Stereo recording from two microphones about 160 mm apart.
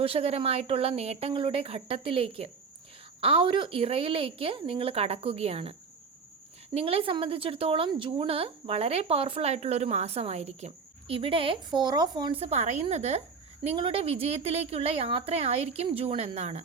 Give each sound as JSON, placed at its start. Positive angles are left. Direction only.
{"t": 0.0, "sound": "a woman's voice", "side_deg": -40}
{"t": 6.7, "sound": "a woman's voice", "side_deg": -35}